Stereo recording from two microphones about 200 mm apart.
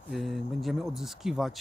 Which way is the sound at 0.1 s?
Centre (ahead or behind).